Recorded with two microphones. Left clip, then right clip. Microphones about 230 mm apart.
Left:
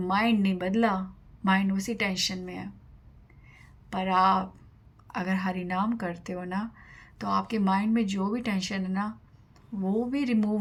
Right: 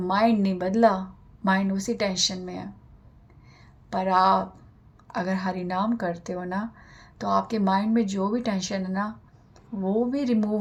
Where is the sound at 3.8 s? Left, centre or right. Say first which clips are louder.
Right 3 dB; left.